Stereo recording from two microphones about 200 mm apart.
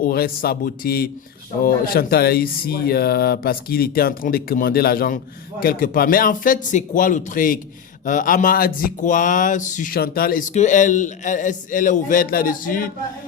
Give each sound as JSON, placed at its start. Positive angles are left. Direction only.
{"t": 0.0, "sound": "speech", "side_deg": 50}
{"t": 10.5, "sound": "speech", "side_deg": 40}